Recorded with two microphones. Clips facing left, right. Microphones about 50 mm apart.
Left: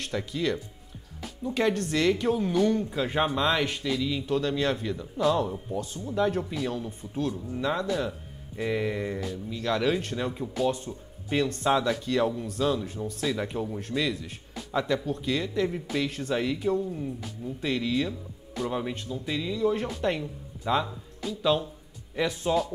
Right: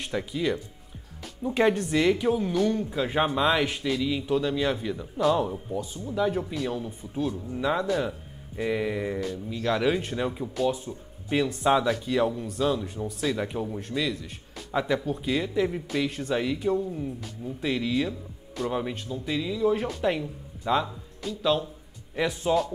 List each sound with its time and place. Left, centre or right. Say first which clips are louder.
0.0 s speech: right 1 dB; centre
14.7 s speech: right 1 dB; centre